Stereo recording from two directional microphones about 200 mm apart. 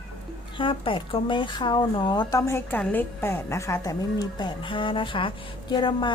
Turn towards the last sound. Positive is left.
turn(degrees=25)  # may be behind; listen again after turning